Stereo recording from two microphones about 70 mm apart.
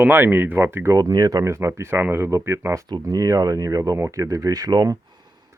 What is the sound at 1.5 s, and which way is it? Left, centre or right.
Speech, right.